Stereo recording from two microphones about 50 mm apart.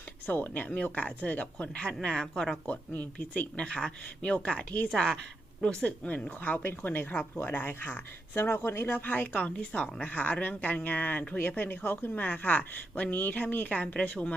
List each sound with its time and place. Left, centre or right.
0.3 s speech: left; by 2.2 s centre
2.2 s speech: centre
2.6 s speech: left
5.6 s speech: centre
6.4 s speech: left
7.3 s speech: left
9.5 s speech: left